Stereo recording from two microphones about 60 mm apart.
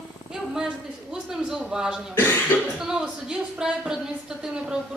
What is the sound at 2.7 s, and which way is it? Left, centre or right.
Speech, centre.